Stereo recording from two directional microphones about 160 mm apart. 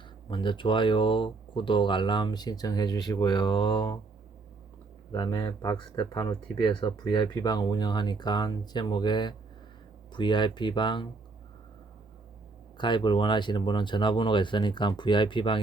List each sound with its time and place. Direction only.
0.3 s speech: 30° left (ahead or behind)
5.1 s speech: 25° left (ahead or behind)
12.7 s speech: 30° left (ahead or behind)